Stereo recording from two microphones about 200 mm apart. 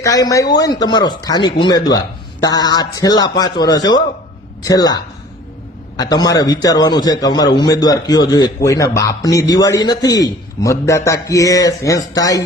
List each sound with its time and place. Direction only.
0.0 s speech: 15° left (ahead or behind)
6.0 s a man's voice: 20° left (ahead or behind)